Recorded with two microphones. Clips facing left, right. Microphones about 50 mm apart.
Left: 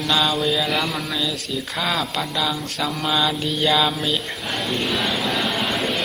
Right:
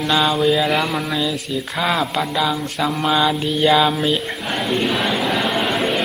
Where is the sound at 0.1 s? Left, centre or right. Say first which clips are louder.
Right 4 dB; centre.